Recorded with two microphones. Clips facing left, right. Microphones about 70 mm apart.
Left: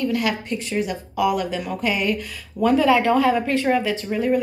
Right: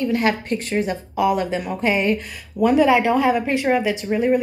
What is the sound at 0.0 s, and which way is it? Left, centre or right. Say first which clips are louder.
A woman's voice: right 3 dB; right.